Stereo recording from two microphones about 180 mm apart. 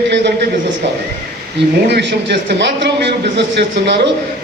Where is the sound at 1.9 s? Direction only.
70° right (ahead or behind).